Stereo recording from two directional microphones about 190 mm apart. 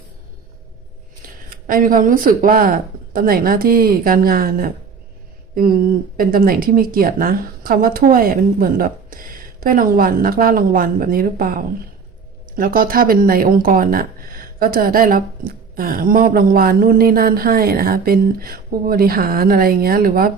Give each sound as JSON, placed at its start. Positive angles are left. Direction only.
{"t": 1.5, "sound": "speech", "side_deg": -50}
{"t": 6.1, "sound": "speech", "side_deg": -50}